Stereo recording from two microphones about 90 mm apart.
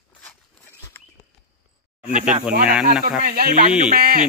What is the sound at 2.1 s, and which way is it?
Speech, 10° right (ahead or behind).